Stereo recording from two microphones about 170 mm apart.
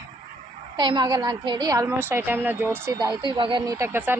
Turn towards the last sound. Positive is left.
turn(degrees=-10)  # may be behind; listen again after turning